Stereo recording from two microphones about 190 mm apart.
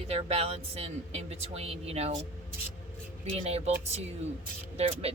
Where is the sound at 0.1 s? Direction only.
30° right (ahead or behind).